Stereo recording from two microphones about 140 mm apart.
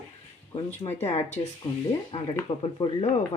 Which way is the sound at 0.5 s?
50° left (ahead or behind).